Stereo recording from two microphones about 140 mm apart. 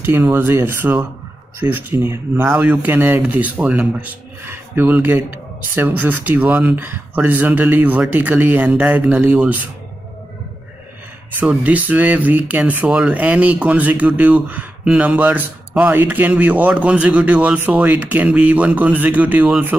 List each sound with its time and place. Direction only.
0.0 s speech: 15° right (ahead or behind)
11.3 s speech: 10° right (ahead or behind)